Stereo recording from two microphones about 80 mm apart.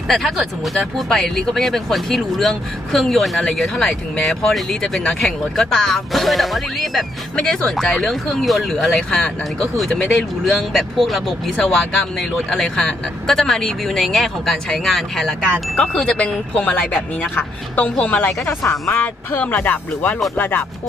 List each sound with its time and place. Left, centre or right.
0.1 s speech: centre
18.7 s speech: left